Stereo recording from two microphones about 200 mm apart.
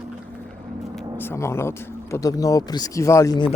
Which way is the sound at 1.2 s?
10° left (ahead or behind).